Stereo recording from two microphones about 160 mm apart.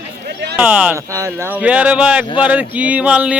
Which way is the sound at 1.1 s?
20° right (ahead or behind).